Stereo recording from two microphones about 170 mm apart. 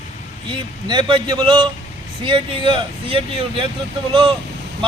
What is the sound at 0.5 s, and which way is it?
Speech, 30° right (ahead or behind).